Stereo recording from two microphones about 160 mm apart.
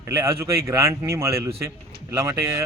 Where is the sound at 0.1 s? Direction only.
20° right (ahead or behind).